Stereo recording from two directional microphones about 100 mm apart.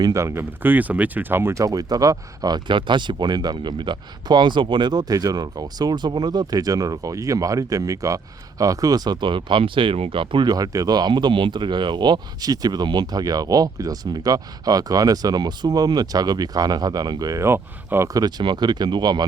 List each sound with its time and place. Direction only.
0.0 s speech: 30° right (ahead or behind)
18.1 s speech: 40° right (ahead or behind)